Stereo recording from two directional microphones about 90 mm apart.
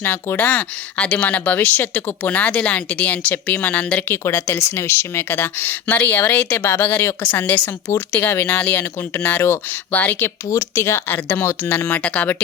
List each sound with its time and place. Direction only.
0.0 s speech: 25° left (ahead or behind)
4.1 s speech: 25° left (ahead or behind)